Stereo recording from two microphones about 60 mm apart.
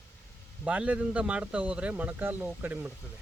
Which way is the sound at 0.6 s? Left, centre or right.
Right.